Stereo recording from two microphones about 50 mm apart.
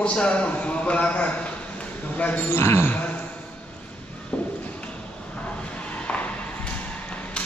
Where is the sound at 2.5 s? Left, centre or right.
Left.